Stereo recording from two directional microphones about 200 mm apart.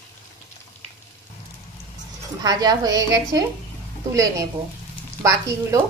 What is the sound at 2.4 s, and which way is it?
Speech, 20° right (ahead or behind).